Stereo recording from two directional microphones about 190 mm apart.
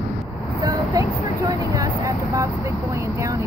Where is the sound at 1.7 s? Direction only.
15° right (ahead or behind).